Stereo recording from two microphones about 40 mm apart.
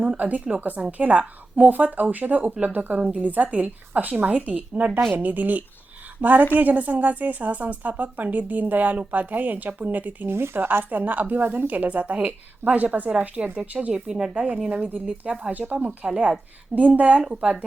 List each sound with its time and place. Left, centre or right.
0.0 s a woman's voice: right
1.1 s a woman's voice: right
10.2 s speech: right
10.9 s a woman's voice: right
12.7 s a woman's voice: right
13.3 s a woman's voice: right
13.9 s speech: centre
15.5 s a woman's voice: right
16.0 s speech: right
16.7 s a woman's voice: right
17.4 s speech: right